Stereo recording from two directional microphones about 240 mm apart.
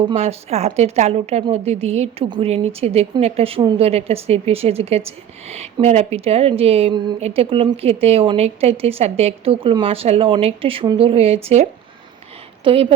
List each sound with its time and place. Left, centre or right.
0.0 s speech: right